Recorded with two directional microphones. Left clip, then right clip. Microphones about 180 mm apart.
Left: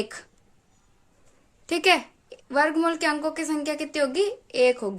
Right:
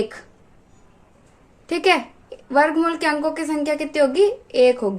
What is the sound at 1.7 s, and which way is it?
A woman's voice, 30° left (ahead or behind).